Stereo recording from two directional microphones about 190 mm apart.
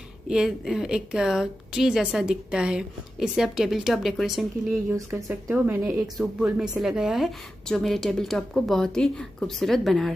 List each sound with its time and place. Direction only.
0.3 s a woman's voice: 5° right (ahead or behind)
4.9 s a woman's voice: 10° right (ahead or behind)